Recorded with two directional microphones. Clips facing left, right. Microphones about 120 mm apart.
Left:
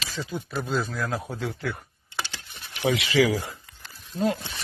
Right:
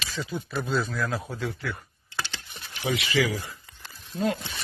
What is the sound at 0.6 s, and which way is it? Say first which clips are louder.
Speech: even; 10° left (ahead or behind).